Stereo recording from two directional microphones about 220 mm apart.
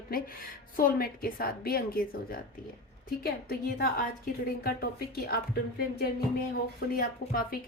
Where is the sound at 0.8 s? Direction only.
40° left (ahead or behind).